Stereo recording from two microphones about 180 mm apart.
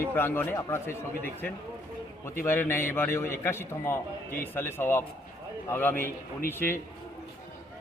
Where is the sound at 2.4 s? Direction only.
10° left (ahead or behind).